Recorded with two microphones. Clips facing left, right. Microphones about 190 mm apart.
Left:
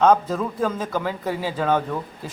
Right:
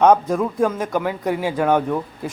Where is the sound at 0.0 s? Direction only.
15° right (ahead or behind).